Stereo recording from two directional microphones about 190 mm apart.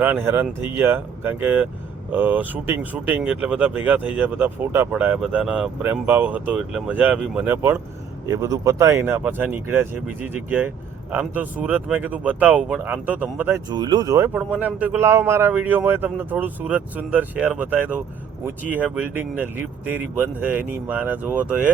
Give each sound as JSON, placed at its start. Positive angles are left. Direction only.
{"t": 0.0, "sound": "speech", "side_deg": -10}
{"t": 13.7, "sound": "speech", "side_deg": -20}
{"t": 14.3, "sound": "speech", "side_deg": -5}